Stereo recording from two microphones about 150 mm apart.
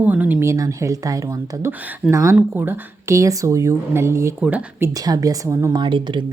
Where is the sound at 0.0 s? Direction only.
10° right (ahead or behind).